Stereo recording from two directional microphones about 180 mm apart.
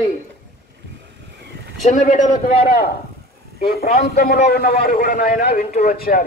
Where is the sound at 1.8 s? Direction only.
45° left (ahead or behind).